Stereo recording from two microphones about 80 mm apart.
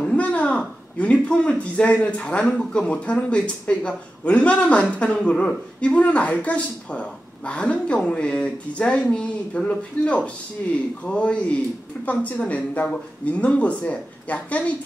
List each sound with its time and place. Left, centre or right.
0.0 s a woman's voice: centre